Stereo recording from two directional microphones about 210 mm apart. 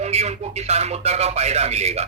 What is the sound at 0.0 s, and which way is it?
Speech, 30° right (ahead or behind).